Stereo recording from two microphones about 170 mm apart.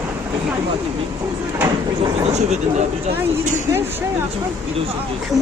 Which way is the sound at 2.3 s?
40° right (ahead or behind).